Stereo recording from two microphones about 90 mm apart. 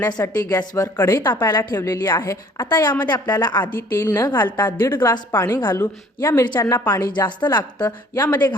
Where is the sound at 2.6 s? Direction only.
55° left (ahead or behind).